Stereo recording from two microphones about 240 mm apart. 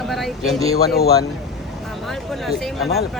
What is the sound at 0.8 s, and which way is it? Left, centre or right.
Speech, left.